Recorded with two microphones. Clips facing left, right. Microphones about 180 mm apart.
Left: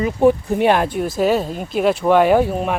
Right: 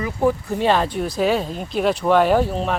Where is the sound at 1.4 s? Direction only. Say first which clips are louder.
Left 3 dB; 5° left (ahead or behind).